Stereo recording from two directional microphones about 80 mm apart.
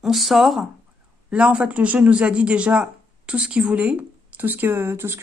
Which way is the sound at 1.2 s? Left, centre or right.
Centre.